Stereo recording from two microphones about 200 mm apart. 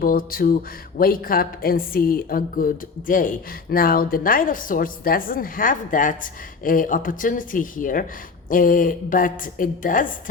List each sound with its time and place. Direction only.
0.0 s a woman's voice: 45° left (ahead or behind)